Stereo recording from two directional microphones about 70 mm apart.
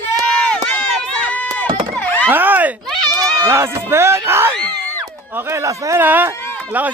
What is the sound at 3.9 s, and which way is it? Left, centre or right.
Speech, right.